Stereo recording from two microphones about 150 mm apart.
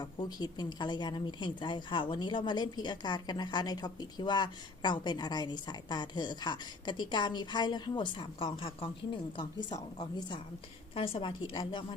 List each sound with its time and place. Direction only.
0.0 s a woman's voice: 30° left (ahead or behind)